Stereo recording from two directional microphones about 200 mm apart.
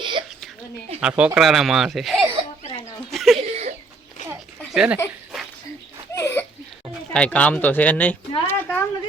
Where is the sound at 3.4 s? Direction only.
35° right (ahead or behind).